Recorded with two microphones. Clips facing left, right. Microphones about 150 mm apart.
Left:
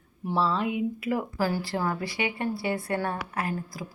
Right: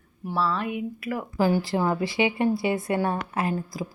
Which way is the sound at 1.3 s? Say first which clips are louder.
Right 5 dB; 20° right (ahead or behind).